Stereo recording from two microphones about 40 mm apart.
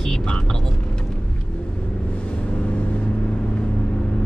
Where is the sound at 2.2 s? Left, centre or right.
Left.